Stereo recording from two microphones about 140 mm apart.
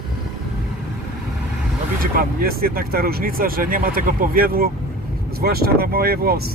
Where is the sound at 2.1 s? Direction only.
90° right.